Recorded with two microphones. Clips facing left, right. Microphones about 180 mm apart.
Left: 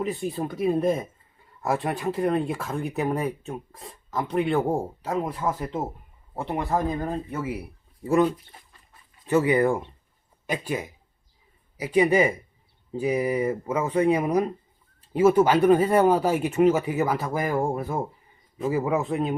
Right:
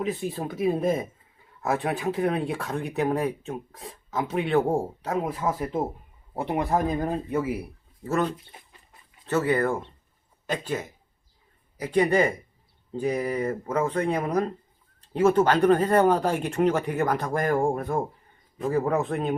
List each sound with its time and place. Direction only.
0.0 s speech: centre (ahead or behind)
8.0 s speech: 10° left (ahead or behind)